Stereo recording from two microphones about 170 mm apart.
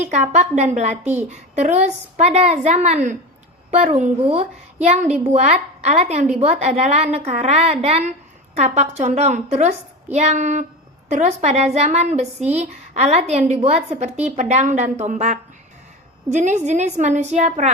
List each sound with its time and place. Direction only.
0.3 s a woman's voice: 45° right (ahead or behind)